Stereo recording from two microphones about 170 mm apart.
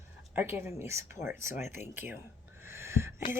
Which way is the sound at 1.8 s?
10° right (ahead or behind).